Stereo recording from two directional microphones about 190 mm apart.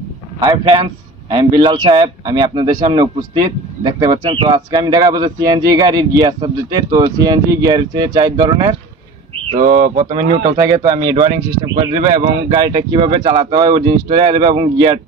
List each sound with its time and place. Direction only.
0.4 s speech: 25° right (ahead or behind)
9.5 s speech: 45° right (ahead or behind)
9.9 s speech: 25° right (ahead or behind)